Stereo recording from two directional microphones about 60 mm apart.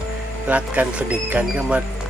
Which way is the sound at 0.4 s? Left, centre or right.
Right.